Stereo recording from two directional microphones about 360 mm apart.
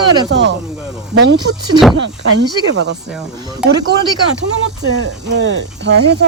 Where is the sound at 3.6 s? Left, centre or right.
Centre.